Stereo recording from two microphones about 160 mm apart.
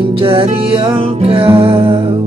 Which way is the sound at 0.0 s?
35° right (ahead or behind).